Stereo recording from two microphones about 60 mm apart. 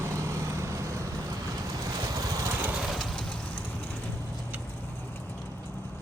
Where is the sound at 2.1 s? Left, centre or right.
Right.